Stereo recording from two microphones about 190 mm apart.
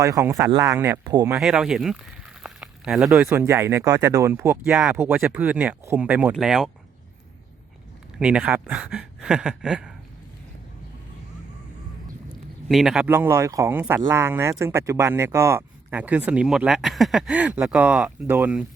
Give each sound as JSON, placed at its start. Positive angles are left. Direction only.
{"t": 0.0, "sound": "speech", "side_deg": -15}
{"t": 1.3, "sound": "speech", "side_deg": 0}
{"t": 2.4, "sound": "a sound", "side_deg": 0}
{"t": 3.2, "sound": "speech", "side_deg": -15}
{"t": 8.2, "sound": "speech", "side_deg": -5}
{"t": 12.6, "sound": "speech", "side_deg": 0}